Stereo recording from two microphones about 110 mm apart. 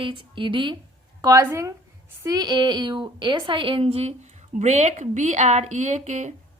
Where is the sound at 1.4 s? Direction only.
25° right (ahead or behind).